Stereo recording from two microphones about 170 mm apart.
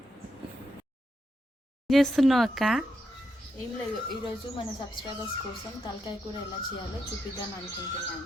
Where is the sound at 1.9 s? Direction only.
Centre (ahead or behind).